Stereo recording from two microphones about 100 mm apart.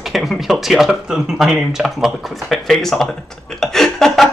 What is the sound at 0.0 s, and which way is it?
Speech, centre (ahead or behind).